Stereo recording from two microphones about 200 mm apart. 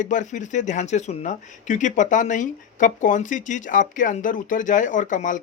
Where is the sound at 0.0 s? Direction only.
40° left (ahead or behind).